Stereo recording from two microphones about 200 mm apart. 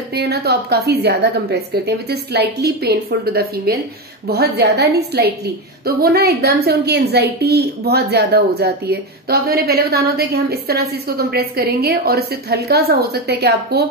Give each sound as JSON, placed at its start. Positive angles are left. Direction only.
{"t": 0.1, "sound": "a woman's voice", "side_deg": -55}